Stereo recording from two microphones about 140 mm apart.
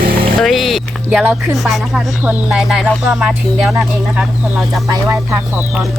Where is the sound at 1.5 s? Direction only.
Centre (ahead or behind).